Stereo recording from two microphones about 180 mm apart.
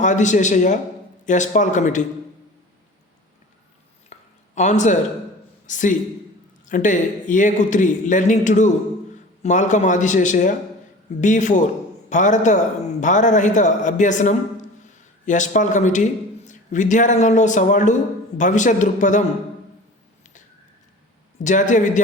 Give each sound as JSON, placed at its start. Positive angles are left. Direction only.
{"t": 0.0, "sound": "a man's voice", "side_deg": 40}
{"t": 4.1, "sound": "a sound", "side_deg": 40}
{"t": 5.6, "sound": "a man's voice", "side_deg": 45}
{"t": 21.3, "sound": "a man's voice", "side_deg": 45}